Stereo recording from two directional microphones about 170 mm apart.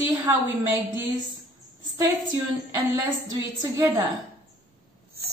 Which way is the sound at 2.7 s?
20° right (ahead or behind).